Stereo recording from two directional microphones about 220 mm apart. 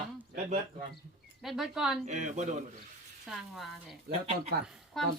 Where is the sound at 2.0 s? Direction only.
30° right (ahead or behind).